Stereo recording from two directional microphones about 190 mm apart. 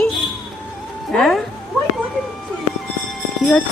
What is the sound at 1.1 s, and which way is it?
Speech, centre (ahead or behind).